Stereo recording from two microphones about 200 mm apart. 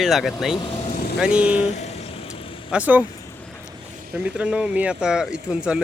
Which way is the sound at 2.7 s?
10° right (ahead or behind).